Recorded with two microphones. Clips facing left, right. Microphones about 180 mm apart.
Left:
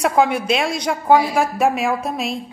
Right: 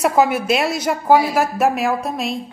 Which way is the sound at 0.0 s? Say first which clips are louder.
Right 1 dB; 5° right (ahead or behind).